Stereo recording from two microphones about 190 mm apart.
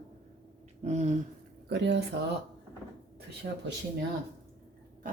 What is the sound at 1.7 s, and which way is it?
Speech, 70° right (ahead or behind).